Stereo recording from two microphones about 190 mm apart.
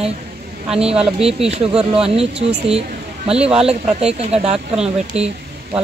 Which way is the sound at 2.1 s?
30° right (ahead or behind).